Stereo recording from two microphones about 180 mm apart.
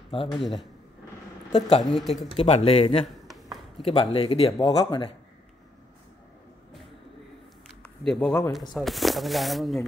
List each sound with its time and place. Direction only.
0.1 s speech: 30° left (ahead or behind)
0.4 s speech: centre (ahead or behind)
1.5 s speech: 30° left (ahead or behind)
7.6 s a sound: centre (ahead or behind)
8.5 s speech: centre (ahead or behind)